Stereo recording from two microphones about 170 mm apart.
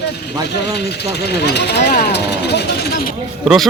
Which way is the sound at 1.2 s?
75° left (ahead or behind).